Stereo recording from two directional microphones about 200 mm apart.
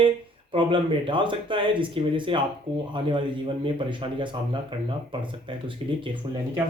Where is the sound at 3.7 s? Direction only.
25° right (ahead or behind).